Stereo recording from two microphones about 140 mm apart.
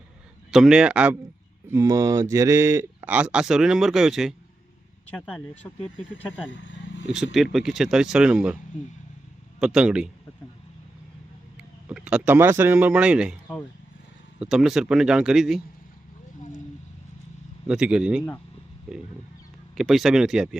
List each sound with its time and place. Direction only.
0.5 s speech: 5° right (ahead or behind)
5.1 s speech: 15° left (ahead or behind)
7.1 s speech: centre (ahead or behind)
9.6 s speech: 5° right (ahead or behind)
11.9 s speech: 5° right (ahead or behind)
14.3 s speech: 5° right (ahead or behind)
17.7 s speech: 5° right (ahead or behind)